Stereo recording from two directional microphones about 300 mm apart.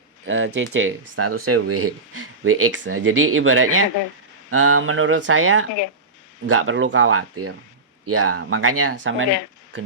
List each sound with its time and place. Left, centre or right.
0.3 s speech: right